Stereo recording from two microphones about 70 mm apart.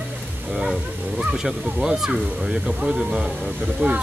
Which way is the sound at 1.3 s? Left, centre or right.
Centre.